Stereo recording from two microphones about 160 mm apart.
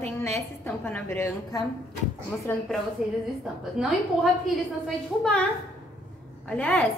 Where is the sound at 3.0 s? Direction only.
5° right (ahead or behind).